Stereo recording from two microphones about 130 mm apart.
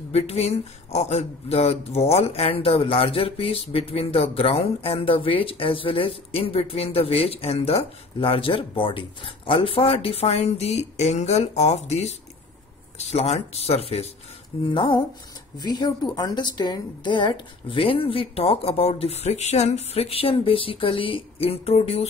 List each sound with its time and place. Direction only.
0.1 s speech: 50° left (ahead or behind)
14.7 s speech: 40° left (ahead or behind)